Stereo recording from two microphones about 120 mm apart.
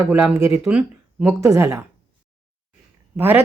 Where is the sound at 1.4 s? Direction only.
25° right (ahead or behind).